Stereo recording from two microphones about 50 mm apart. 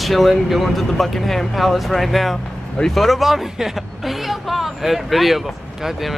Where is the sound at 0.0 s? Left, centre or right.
Centre.